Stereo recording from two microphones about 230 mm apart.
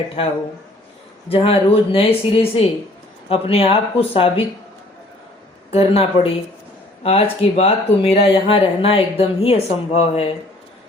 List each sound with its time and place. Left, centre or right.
0.2 s speech: left
5.7 s speech: left